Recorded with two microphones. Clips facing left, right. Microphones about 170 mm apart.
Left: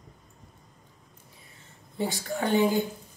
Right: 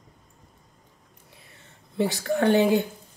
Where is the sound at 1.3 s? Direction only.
70° right (ahead or behind).